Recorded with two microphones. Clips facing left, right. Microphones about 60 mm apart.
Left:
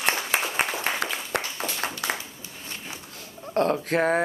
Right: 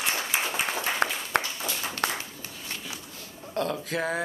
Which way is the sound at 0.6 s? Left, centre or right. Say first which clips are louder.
Left 3 dB; left.